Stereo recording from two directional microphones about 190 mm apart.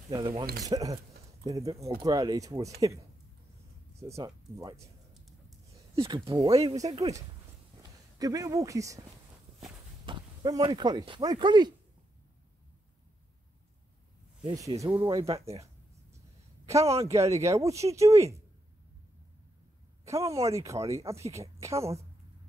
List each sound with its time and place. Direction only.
0.1 s speech: 25° right (ahead or behind)
4.1 s speech: 15° right (ahead or behind)
5.9 s speech: 25° right (ahead or behind)
10.0 s speech: 25° right (ahead or behind)
14.4 s speech: 20° right (ahead or behind)
15.0 s speech: 30° right (ahead or behind)
16.8 s speech: 30° right (ahead or behind)
17.1 s speech: 15° right (ahead or behind)
20.1 s speech: 15° right (ahead or behind)